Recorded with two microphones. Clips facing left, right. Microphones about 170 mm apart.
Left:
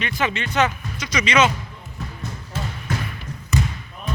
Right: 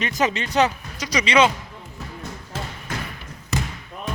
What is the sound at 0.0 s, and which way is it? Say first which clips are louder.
Speech: right 2 dB; 40° right (ahead or behind).